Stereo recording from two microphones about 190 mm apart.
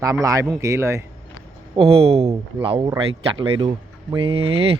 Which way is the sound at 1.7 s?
30° right (ahead or behind).